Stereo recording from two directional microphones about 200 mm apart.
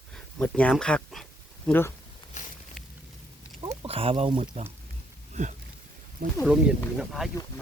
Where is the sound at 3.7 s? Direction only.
30° right (ahead or behind).